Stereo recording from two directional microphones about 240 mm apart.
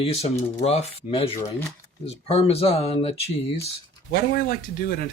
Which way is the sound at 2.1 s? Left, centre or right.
Left.